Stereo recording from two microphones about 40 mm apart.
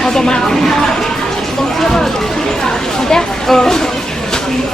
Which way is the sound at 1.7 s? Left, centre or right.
Centre.